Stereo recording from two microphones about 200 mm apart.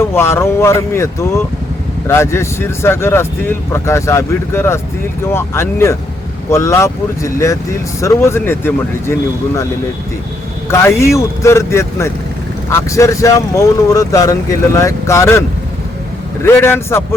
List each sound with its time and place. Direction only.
0.1 s speech: 10° left (ahead or behind)
10.7 s speech: 15° left (ahead or behind)